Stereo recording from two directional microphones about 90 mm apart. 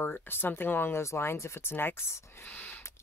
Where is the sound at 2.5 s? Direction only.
20° left (ahead or behind).